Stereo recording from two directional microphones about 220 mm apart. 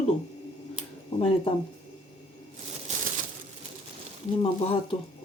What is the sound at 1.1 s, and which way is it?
Speech, 25° left (ahead or behind).